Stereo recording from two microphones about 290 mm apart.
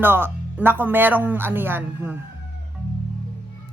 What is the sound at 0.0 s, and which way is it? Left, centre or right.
Speech, centre.